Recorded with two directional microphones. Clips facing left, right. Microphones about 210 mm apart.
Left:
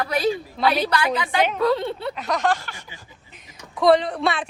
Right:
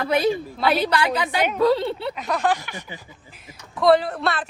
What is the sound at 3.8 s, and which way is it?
Speech, 5° right (ahead or behind).